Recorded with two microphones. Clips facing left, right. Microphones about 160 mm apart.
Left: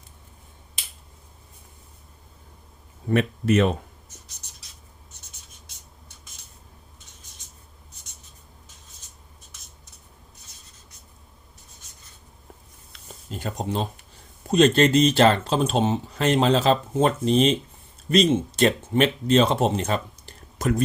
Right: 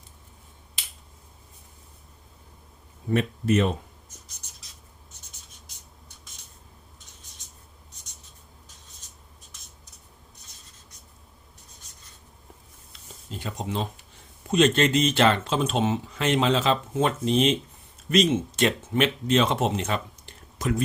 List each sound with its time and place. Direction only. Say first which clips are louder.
3.1 s speech: left 2 dB; 70° left (ahead or behind)
13.6 s speech: left 2 dB; 40° left (ahead or behind)
17.2 s speech: left 3 dB; centre (ahead or behind)
18.1 s speech: left 2 dB; 35° left (ahead or behind)
19.7 s a sound: left 3 dB; 40° left (ahead or behind)